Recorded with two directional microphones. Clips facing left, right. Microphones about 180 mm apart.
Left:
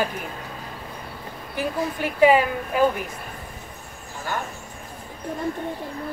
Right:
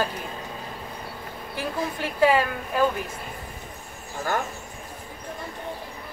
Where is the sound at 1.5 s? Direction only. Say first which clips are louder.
Left 3 dB; 15° left (ahead or behind).